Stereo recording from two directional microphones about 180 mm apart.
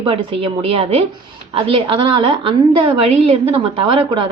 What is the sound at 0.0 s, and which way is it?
A woman's voice, 30° right (ahead or behind).